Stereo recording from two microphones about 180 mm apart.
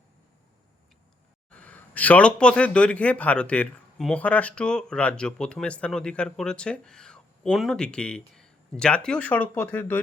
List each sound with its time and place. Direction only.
1.5 s speech: 5° left (ahead or behind)